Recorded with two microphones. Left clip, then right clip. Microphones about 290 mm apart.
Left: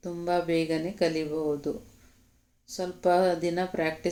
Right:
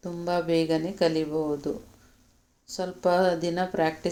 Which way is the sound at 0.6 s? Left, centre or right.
Right.